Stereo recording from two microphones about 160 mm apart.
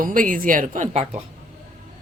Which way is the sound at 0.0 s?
60° right (ahead or behind).